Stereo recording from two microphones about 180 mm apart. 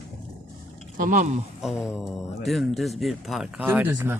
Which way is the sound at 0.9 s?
45° right (ahead or behind).